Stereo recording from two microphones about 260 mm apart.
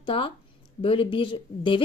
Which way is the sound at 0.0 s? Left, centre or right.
Centre.